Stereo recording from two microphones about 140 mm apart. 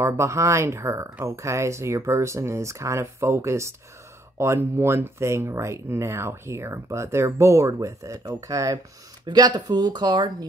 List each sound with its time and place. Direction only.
0.0 s speech: 20° right (ahead or behind)